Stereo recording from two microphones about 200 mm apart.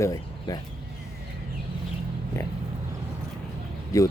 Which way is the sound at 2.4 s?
15° left (ahead or behind).